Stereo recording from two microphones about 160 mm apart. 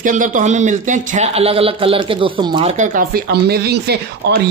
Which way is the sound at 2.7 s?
55° right (ahead or behind).